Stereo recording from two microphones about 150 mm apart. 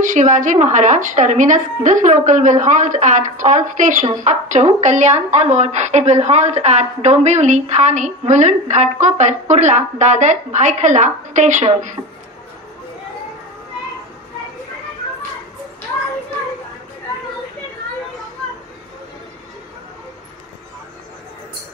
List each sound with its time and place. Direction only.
0.0 s a woman's voice: 55° right (ahead or behind)